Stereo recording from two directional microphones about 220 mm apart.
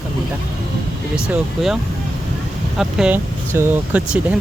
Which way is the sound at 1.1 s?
5° right (ahead or behind).